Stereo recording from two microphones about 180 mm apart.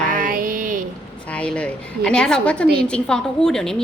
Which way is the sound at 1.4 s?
5° left (ahead or behind).